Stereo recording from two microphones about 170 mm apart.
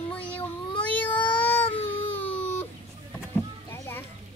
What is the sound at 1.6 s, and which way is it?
Baby cry, 30° left (ahead or behind).